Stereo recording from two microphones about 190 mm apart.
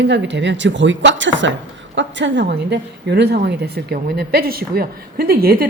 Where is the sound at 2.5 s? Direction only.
60° right (ahead or behind).